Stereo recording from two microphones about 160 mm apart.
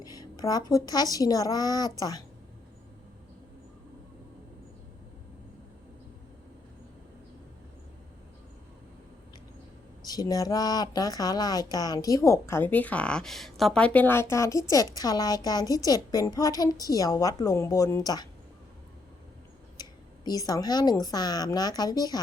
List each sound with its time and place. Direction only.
0.0 s speech: 25° left (ahead or behind)
10.0 s speech: 25° left (ahead or behind)
19.7 s speech: 25° left (ahead or behind)